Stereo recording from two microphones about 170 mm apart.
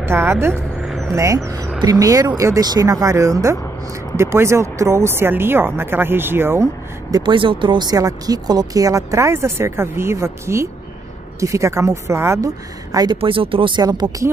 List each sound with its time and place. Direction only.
0.0 s speech: 15° right (ahead or behind)
0.8 s vehicle: centre (ahead or behind)
1.1 s speech: 20° right (ahead or behind)